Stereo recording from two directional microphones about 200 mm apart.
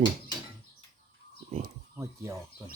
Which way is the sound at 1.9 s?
15° right (ahead or behind).